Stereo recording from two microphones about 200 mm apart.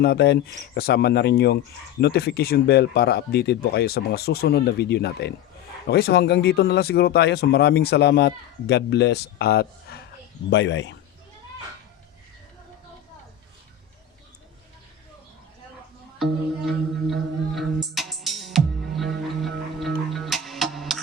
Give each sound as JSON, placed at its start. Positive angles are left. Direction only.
{"t": 0.0, "sound": "speech", "side_deg": 55}
{"t": 16.1, "sound": "music", "side_deg": 0}